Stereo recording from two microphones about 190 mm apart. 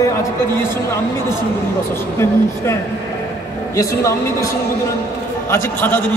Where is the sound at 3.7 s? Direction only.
15° left (ahead or behind).